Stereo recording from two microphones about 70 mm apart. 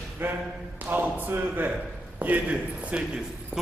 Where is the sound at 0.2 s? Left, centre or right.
Right.